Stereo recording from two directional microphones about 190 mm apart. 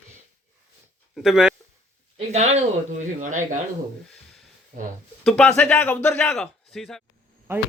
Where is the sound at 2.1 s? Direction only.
35° right (ahead or behind).